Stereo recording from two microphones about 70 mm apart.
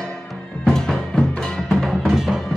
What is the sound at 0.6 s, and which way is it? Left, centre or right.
Music, centre.